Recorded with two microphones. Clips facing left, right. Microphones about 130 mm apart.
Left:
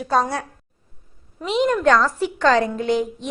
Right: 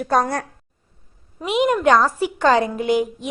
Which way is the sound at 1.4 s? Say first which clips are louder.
Right 1 dB; 10° right (ahead or behind).